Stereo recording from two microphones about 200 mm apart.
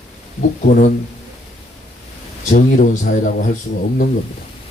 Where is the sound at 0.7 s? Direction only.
40° left (ahead or behind).